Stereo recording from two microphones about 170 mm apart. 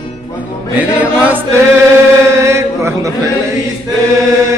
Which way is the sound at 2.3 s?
15° right (ahead or behind).